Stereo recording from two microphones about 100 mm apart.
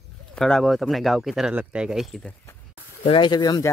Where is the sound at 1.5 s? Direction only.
15° right (ahead or behind).